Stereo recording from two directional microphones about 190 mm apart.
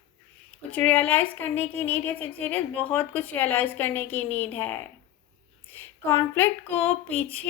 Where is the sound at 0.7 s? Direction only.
10° left (ahead or behind).